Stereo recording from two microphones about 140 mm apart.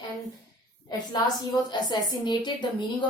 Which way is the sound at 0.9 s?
30° left (ahead or behind).